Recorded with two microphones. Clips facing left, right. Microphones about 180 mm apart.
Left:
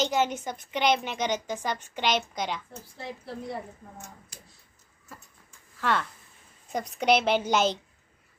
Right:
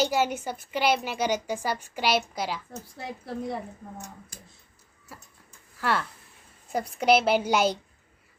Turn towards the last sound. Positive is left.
turn(degrees=-10)  # may be behind; listen again after turning